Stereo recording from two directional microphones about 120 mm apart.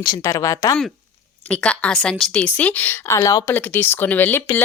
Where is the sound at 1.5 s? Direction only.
10° left (ahead or behind); by 3.5 s 30° left (ahead or behind).